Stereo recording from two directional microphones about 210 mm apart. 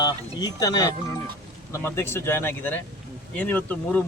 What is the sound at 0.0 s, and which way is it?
Speech, 20° left (ahead or behind).